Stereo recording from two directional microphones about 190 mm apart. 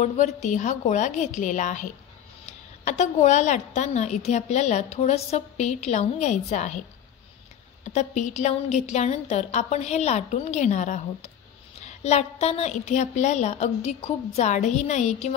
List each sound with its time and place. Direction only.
0.0 s a woman's voice: 40° left (ahead or behind)
7.8 s a woman's voice: 40° left (ahead or behind)